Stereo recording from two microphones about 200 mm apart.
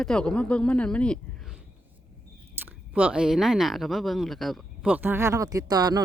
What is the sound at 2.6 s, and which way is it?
Speech, 10° right (ahead or behind).